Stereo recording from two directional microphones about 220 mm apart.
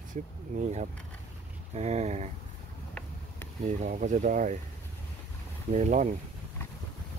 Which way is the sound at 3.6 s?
35° right (ahead or behind).